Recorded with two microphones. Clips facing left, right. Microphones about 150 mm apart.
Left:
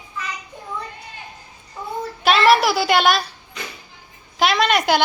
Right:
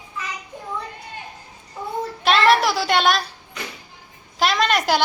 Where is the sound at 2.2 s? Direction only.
5° left (ahead or behind).